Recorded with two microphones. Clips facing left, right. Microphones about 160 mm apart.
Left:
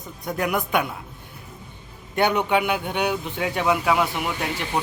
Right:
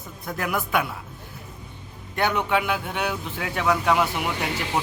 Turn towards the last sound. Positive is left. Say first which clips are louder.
# even
turn(degrees=0)  # may be behind; listen again after turning